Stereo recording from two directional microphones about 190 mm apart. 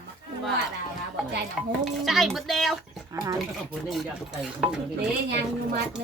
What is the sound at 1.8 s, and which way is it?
Stir, centre (ahead or behind).